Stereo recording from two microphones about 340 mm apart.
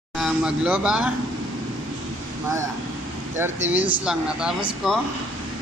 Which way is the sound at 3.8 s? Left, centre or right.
Left.